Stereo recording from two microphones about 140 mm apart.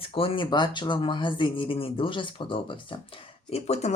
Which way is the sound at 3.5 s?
50° left (ahead or behind).